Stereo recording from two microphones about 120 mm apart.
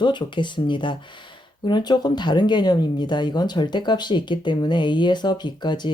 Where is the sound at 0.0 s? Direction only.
40° left (ahead or behind).